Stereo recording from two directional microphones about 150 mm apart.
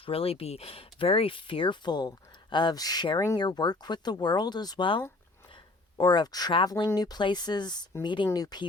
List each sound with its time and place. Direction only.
0.0 s speech: 40° left (ahead or behind)